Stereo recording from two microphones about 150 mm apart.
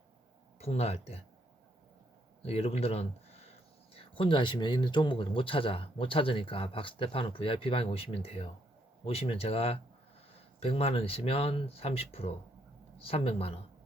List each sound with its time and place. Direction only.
0.6 s speech: 45° left (ahead or behind)
2.4 s speech: 40° left (ahead or behind)